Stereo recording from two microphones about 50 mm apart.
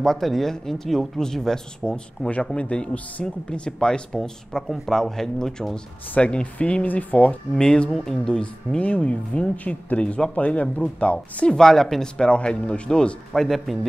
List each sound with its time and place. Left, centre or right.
0.0 s speech: centre
2.5 s speech: left
6.1 s speech: left
7.5 s speech: centre
11.5 s speech: centre
12.2 s speech: centre
13.3 s a man's voice: centre